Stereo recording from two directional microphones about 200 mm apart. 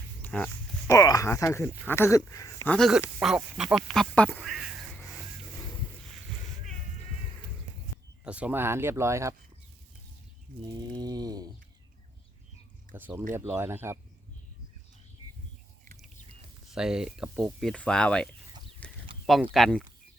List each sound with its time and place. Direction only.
0.2 s pig: 10° left (ahead or behind)
0.9 s speech: 15° left (ahead or behind)
2.7 s speech: centre (ahead or behind)
8.2 s speech: 5° right (ahead or behind)
10.8 s a sound: 20° right (ahead or behind)
13.0 s speech: 10° right (ahead or behind)
16.6 s speech: 5° right (ahead or behind)
18.8 s livestock: 5° left (ahead or behind)
19.2 s speech: centre (ahead or behind)